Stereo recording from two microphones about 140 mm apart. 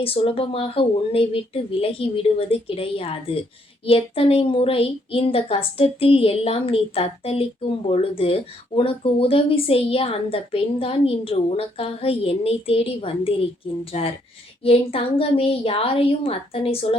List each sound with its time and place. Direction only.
0.0 s speech: 40° left (ahead or behind)